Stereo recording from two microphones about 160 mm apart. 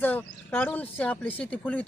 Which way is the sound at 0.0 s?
10° left (ahead or behind).